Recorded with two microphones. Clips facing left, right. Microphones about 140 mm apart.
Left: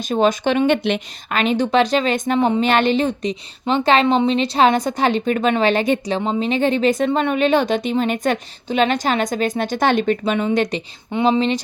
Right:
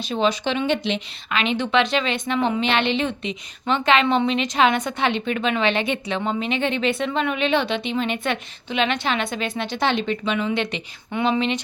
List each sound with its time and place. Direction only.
0.0 s a woman's voice: 45° left (ahead or behind)